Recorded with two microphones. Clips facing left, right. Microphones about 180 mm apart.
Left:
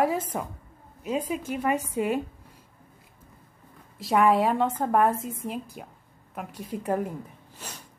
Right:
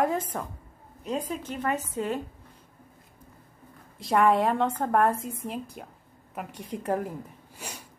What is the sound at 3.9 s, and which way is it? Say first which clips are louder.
A woman's voice: left 1 dB; centre (ahead or behind).